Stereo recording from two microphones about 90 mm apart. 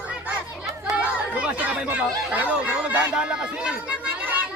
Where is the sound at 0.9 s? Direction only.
15° right (ahead or behind).